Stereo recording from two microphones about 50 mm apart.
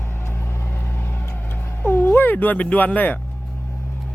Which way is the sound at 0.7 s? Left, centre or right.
Left.